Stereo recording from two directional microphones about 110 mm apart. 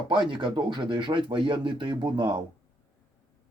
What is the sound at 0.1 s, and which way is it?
Speech, 45° right (ahead or behind).